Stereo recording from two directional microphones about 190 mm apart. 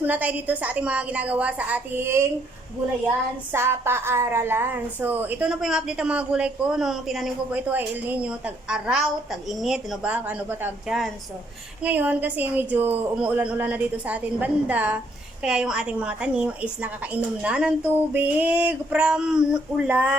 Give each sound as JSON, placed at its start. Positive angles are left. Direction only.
{"t": 0.0, "sound": "a woman's voice", "side_deg": -10}
{"t": 3.5, "sound": "a woman's voice", "side_deg": -10}